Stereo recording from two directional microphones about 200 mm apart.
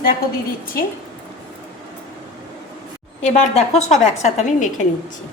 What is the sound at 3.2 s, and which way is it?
A woman's voice, 35° left (ahead or behind).